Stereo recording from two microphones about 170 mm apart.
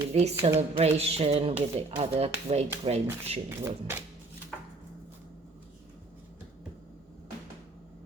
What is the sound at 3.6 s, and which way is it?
Speech, 15° right (ahead or behind).